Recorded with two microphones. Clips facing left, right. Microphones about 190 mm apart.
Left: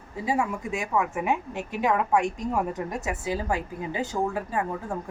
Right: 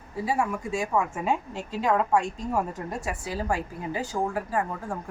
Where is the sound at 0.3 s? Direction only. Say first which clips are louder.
Left 1 dB; 15° left (ahead or behind).